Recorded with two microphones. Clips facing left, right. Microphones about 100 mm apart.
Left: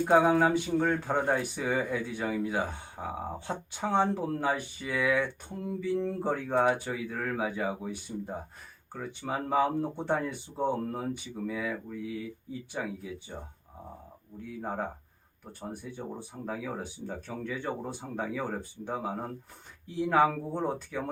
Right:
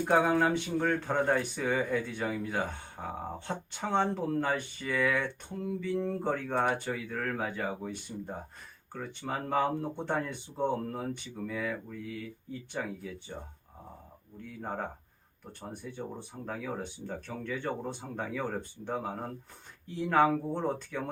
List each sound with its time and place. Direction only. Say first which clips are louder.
0.0 s speech: left 3 dB; 10° left (ahead or behind)
14.6 s speech: left 2 dB; 10° left (ahead or behind)